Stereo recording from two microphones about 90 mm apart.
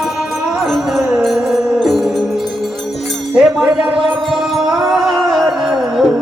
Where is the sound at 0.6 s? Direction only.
Centre (ahead or behind).